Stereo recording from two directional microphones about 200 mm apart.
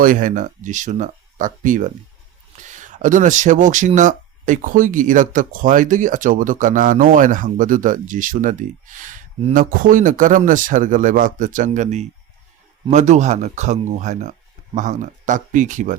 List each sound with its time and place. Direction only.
0.0 s speech: 40° right (ahead or behind)